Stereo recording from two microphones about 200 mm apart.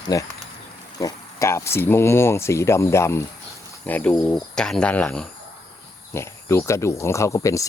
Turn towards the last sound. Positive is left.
turn(degrees=15)  # may be behind; listen again after turning